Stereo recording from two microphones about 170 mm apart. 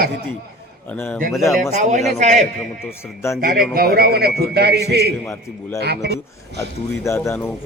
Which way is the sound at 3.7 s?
65° right (ahead or behind).